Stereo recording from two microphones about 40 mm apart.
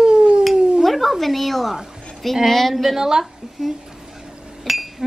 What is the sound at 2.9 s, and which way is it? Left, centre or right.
Speech, centre.